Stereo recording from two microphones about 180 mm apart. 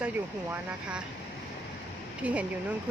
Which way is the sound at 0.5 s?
5° right (ahead or behind).